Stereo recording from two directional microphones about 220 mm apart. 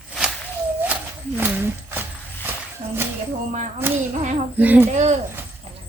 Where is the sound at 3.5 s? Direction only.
35° right (ahead or behind).